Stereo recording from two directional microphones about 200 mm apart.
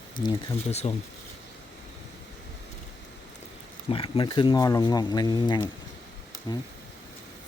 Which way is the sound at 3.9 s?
25° left (ahead or behind).